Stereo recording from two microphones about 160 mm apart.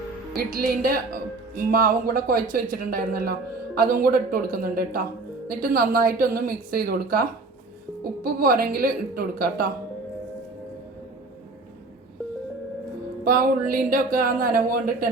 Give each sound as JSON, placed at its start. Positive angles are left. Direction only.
{"t": 0.3, "sound": "a woman's voice", "side_deg": -70}
{"t": 13.2, "sound": "speech", "side_deg": -60}